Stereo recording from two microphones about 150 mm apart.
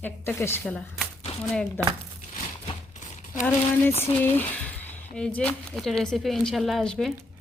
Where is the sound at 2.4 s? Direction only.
50° left (ahead or behind).